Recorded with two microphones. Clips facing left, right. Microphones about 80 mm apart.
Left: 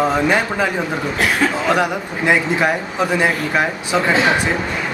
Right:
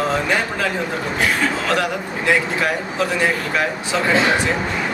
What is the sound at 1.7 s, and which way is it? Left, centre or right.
A man's voice, centre.